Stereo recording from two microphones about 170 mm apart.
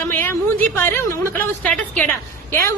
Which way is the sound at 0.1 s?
10° left (ahead or behind).